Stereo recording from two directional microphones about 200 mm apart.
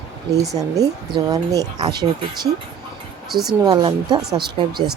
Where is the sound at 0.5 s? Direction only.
15° right (ahead or behind).